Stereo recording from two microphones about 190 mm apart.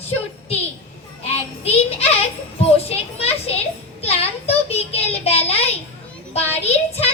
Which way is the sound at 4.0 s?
35° left (ahead or behind).